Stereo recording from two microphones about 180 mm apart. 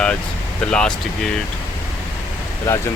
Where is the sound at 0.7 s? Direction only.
5° left (ahead or behind).